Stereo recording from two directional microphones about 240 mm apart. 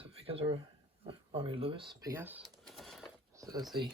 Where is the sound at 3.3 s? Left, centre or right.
Centre.